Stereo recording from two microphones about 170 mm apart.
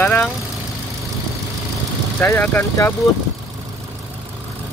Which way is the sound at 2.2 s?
15° left (ahead or behind).